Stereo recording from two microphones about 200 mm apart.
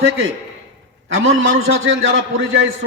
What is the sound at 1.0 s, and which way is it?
A man's voice, 75° right (ahead or behind).